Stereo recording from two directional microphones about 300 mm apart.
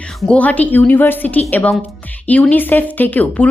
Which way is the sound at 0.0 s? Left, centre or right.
Centre.